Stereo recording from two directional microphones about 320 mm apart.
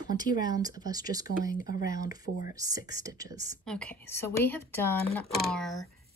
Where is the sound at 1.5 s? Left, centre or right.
Left.